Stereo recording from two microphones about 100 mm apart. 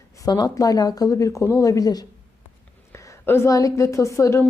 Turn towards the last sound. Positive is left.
turn(degrees=30)  # may be behind; listen again after turning